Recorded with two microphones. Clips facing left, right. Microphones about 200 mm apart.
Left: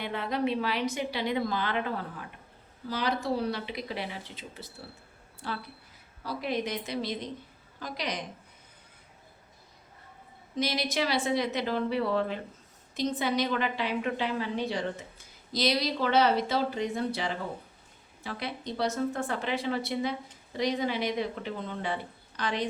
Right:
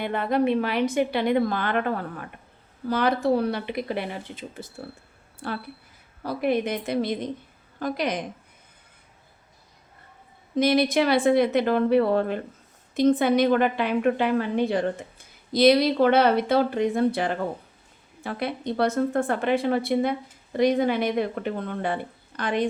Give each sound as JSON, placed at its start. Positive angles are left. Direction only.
{"t": 0.0, "sound": "a woman's voice", "side_deg": -55}
{"t": 10.5, "sound": "a woman's voice", "side_deg": -55}